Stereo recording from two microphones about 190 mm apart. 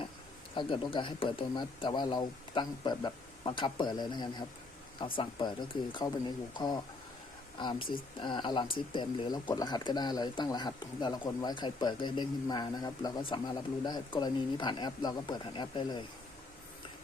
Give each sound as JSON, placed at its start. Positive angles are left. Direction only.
{"t": 0.5, "sound": "speech", "side_deg": 25}